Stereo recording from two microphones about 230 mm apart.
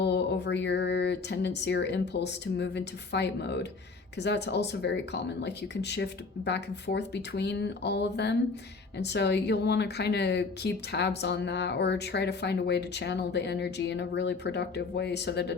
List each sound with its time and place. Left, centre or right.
0.0 s speech: left